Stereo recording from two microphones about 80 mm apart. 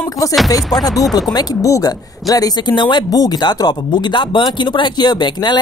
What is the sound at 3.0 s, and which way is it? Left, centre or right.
Speech, left.